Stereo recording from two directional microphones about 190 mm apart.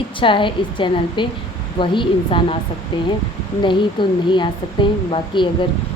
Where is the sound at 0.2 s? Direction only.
25° left (ahead or behind).